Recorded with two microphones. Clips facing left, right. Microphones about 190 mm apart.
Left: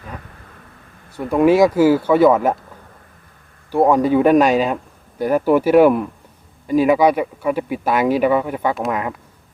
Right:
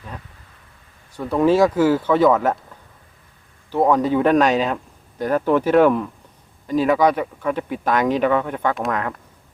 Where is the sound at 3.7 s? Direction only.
10° left (ahead or behind).